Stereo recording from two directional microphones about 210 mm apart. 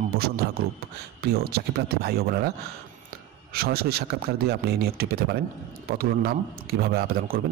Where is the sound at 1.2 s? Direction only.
50° right (ahead or behind).